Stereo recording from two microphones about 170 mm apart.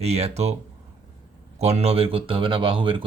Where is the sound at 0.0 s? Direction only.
40° right (ahead or behind).